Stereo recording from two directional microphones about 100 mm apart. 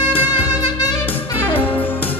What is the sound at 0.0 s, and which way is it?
Music, 15° right (ahead or behind).